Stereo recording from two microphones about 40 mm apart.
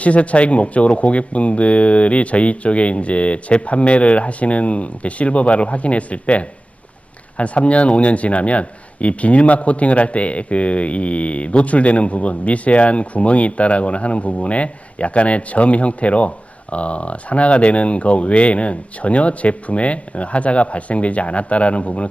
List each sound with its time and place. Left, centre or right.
0.0 s a man's voice: left